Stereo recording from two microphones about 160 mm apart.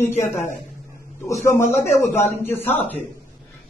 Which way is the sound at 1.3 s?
15° left (ahead or behind).